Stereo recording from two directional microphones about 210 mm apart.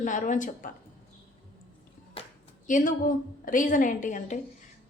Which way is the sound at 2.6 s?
40° left (ahead or behind).